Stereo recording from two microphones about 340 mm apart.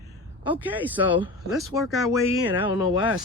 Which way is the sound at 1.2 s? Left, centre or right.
Centre.